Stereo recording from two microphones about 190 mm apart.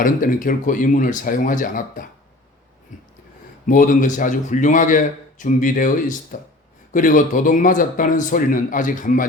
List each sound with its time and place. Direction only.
0.0 s a man's voice: 45° left (ahead or behind)
2.9 s a sound: 40° left (ahead or behind)
3.7 s a man's voice: 45° left (ahead or behind)